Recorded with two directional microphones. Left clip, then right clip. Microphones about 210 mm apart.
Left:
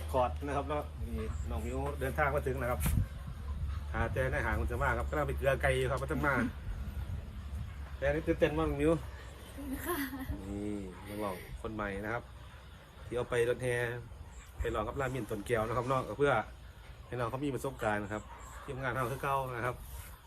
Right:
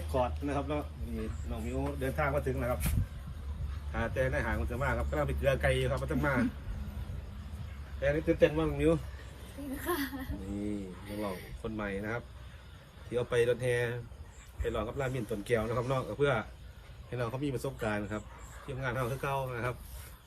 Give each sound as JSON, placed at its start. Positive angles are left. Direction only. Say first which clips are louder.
{"t": 0.1, "sound": "a man's voice", "louder": "even", "side_deg": 15}
{"t": 3.9, "sound": "a man's voice", "louder": "right 2 dB", "side_deg": 15}
{"t": 8.0, "sound": "a man's voice", "louder": "right 3 dB", "side_deg": 15}
{"t": 9.7, "sound": "speech", "louder": "right 2 dB", "side_deg": 0}
{"t": 11.6, "sound": "a man's voice", "louder": "right 1 dB", "side_deg": 15}